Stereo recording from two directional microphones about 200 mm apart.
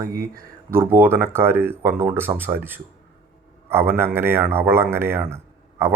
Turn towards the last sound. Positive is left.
turn(degrees=-10)  # may be behind; listen again after turning